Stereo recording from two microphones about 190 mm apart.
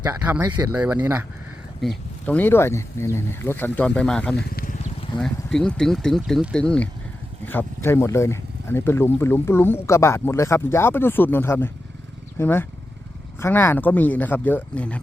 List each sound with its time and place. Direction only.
0.0 s speech: 10° right (ahead or behind)
1.8 s speech: 5° left (ahead or behind)
4.5 s wild animals: 45° left (ahead or behind)
5.2 s speech: 5° left (ahead or behind)